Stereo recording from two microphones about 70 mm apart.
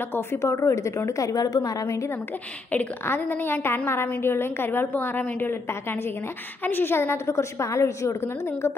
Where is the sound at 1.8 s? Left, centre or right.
Left.